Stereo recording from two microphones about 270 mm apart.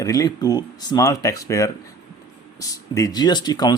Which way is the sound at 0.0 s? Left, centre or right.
Centre.